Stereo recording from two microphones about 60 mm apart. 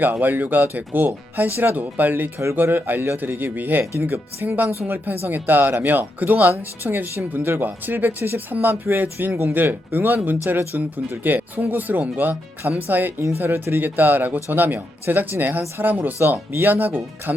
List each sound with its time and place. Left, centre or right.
0.0 s speech: right